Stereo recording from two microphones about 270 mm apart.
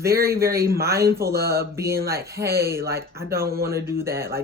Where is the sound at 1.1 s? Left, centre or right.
Centre.